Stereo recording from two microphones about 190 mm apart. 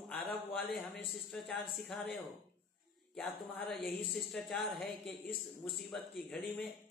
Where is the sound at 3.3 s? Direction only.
50° left (ahead or behind).